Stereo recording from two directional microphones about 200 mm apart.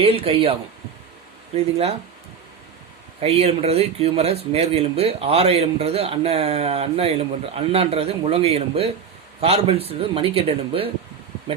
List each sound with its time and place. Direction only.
0.0 s speech: 30° right (ahead or behind)
1.5 s speech: 30° right (ahead or behind)
3.2 s speech: 30° right (ahead or behind)